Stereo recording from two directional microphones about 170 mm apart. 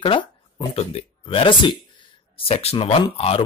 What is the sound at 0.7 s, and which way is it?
Speech, 35° left (ahead or behind).